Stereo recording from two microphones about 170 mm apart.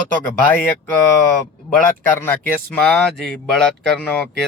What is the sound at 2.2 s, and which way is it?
A man's voice, 10° left (ahead or behind).